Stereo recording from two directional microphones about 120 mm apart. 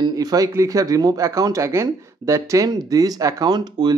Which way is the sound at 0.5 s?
25° right (ahead or behind).